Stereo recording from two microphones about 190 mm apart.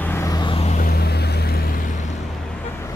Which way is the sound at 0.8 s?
60° left (ahead or behind).